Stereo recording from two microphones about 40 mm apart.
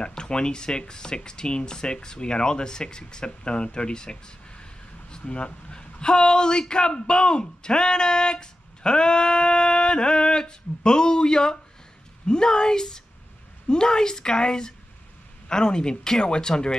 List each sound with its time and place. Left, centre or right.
0.0 s a man's voice: left